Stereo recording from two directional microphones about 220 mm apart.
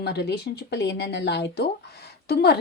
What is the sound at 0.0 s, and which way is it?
A woman's voice, 50° left (ahead or behind).